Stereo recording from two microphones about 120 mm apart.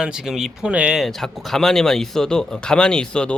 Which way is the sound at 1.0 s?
5° left (ahead or behind).